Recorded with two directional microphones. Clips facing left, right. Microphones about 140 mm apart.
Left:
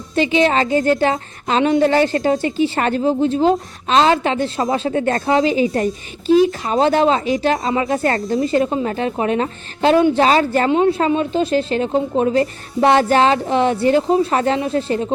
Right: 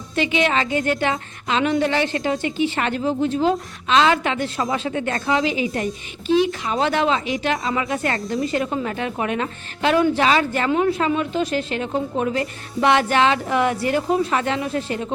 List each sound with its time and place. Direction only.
0.2 s a woman's voice: 35° left (ahead or behind)
1.6 s a woman's voice: 30° left (ahead or behind)
7.6 s a woman's voice: 25° left (ahead or behind)
10.7 s a woman's voice: 25° left (ahead or behind)